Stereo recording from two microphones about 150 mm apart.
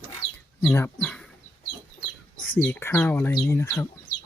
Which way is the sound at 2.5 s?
15° left (ahead or behind).